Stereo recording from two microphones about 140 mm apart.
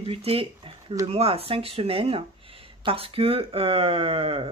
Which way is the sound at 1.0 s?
45° right (ahead or behind).